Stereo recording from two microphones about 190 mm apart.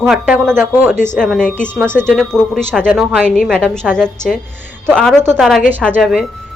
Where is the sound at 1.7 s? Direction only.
10° right (ahead or behind).